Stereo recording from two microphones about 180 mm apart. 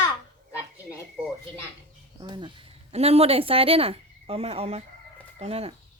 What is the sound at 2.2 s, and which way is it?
Speech, 25° right (ahead or behind).